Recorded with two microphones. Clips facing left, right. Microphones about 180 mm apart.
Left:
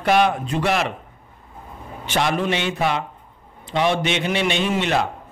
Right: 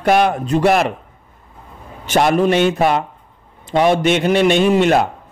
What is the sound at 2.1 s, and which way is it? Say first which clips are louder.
A man's voice: right 7 dB; 45° right (ahead or behind).